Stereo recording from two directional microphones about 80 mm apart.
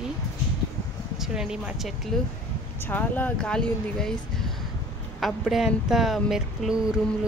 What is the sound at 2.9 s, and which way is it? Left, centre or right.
Speech, left.